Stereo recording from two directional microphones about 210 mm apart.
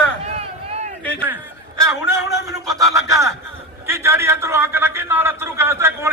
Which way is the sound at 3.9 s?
10° right (ahead or behind).